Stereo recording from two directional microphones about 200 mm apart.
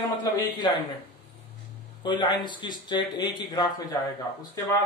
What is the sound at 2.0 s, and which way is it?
Speech, 20° left (ahead or behind).